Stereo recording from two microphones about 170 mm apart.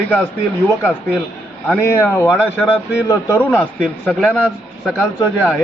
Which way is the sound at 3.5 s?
5° right (ahead or behind).